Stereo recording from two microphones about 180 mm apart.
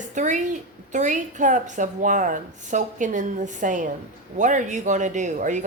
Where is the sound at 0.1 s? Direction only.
45° right (ahead or behind).